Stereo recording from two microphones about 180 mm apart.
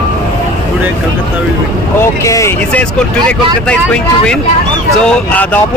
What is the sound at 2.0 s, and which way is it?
Speech, 15° left (ahead or behind).